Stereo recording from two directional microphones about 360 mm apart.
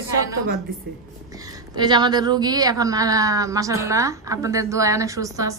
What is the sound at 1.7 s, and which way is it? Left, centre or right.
A woman's voice, centre.